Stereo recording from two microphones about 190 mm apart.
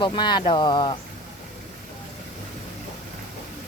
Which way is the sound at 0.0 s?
25° left (ahead or behind).